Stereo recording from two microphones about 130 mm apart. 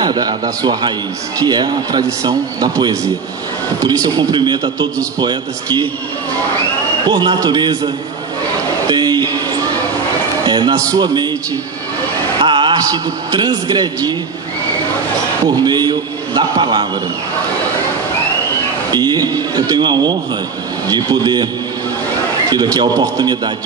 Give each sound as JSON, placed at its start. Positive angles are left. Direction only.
{"t": 0.0, "sound": "a man's voice", "side_deg": -35}
{"t": 7.1, "sound": "a man's voice", "side_deg": -35}
{"t": 8.8, "sound": "a sound", "side_deg": -35}
{"t": 10.4, "sound": "a man's voice", "side_deg": -35}
{"t": 12.4, "sound": "a man's voice", "side_deg": -40}
{"t": 15.4, "sound": "a man's voice", "side_deg": -35}
{"t": 18.9, "sound": "a man's voice", "side_deg": -35}
{"t": 22.5, "sound": "a man's voice", "side_deg": -30}